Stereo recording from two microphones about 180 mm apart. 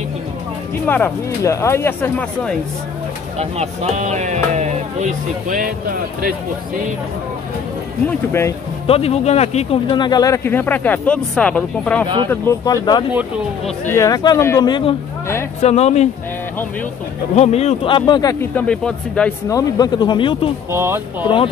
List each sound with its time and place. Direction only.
0.8 s speech: 10° left (ahead or behind)
3.3 s speech: 40° right (ahead or behind)
8.3 s speech: 15° left (ahead or behind)
8.8 s speech: 35° left (ahead or behind)
9.8 s speech: 25° left (ahead or behind); by 12.1 s 5° left (ahead or behind)
12.3 s speech: 15° left (ahead or behind)
15.6 s speech: 35° left (ahead or behind)
17.4 s speech: 35° left (ahead or behind)
18.4 s speech: 5° left (ahead or behind)
19.5 s speech: 25° left (ahead or behind)
20.7 s speech: 15° right (ahead or behind)